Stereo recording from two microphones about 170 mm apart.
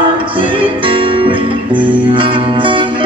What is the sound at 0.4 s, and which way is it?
Music, 30° right (ahead or behind).